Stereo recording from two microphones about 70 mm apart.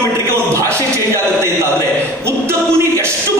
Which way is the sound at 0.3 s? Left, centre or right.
Right.